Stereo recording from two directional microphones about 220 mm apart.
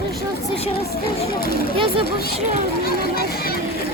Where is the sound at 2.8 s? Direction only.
45° left (ahead or behind).